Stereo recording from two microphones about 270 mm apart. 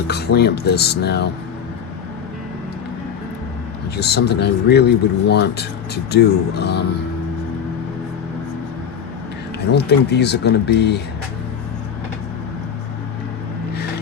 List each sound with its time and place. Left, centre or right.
0.1 s speech: left
3.9 s speech: left
9.7 s speech: left